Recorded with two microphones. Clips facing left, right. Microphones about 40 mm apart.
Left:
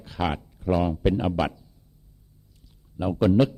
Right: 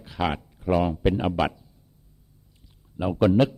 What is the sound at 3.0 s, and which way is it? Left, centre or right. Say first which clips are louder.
Speech: right 1 dB; centre.